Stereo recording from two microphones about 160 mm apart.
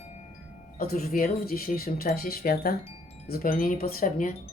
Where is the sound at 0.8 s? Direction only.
70° left (ahead or behind).